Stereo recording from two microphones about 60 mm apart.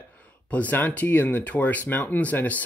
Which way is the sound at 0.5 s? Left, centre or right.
Left.